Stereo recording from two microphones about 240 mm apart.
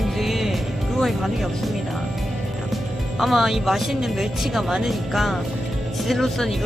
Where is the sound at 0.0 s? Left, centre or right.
Centre.